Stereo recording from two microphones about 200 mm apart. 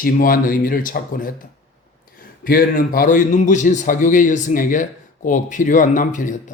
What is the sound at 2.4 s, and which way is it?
A man's voice, 45° left (ahead or behind).